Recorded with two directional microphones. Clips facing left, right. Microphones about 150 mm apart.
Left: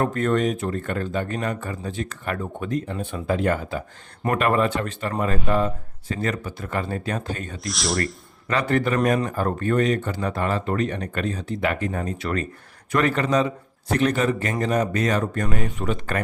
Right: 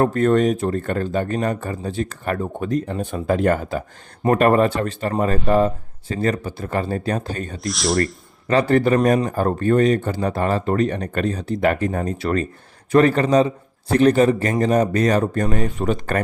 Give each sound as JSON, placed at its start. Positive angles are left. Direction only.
{"t": 0.0, "sound": "speech", "side_deg": -35}
{"t": 7.6, "sound": "speech", "side_deg": 0}
{"t": 8.4, "sound": "speech", "side_deg": -35}